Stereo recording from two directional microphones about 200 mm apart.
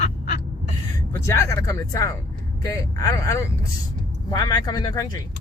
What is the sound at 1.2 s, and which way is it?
Speech, 15° left (ahead or behind).